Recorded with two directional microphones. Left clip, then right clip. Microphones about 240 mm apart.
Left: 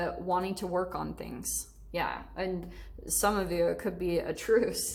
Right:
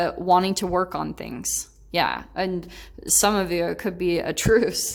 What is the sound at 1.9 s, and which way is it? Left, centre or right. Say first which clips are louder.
A woman's voice: right 10 dB; right.